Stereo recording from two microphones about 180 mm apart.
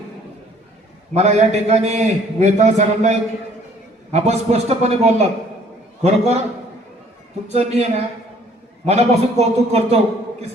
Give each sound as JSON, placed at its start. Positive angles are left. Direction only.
{"t": 1.1, "sound": "a man's voice", "side_deg": -35}
{"t": 7.4, "sound": "a man's voice", "side_deg": -35}
{"t": 8.9, "sound": "a man's voice", "side_deg": -35}